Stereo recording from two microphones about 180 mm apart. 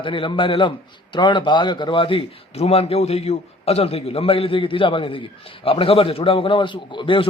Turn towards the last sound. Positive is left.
turn(degrees=30)  # may be behind; listen again after turning